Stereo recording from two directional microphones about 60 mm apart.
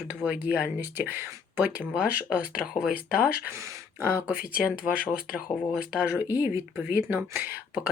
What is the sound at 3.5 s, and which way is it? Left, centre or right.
Speech, right.